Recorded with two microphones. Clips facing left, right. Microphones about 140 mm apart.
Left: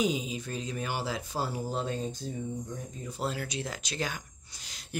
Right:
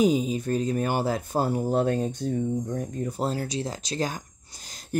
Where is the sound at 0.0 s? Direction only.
45° right (ahead or behind).